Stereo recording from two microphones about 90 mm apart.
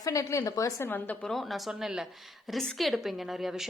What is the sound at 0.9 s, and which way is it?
Speech, 20° left (ahead or behind).